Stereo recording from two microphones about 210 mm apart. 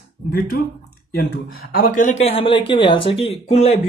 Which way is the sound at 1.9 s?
35° left (ahead or behind).